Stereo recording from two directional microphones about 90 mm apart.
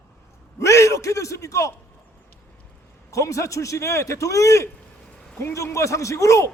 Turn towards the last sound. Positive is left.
turn(degrees=35)  # may be behind; listen again after turning